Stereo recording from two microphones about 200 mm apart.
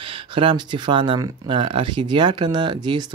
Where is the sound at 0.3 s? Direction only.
25° right (ahead or behind).